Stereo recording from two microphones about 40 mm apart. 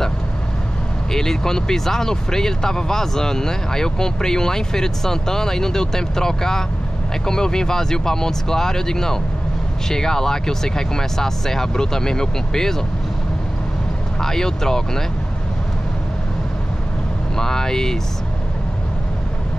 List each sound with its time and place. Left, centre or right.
1.1 s speech: centre
14.2 s speech: centre
17.4 s speech: centre